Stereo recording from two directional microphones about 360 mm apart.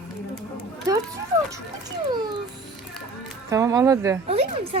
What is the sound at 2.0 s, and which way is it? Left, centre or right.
Speech, centre.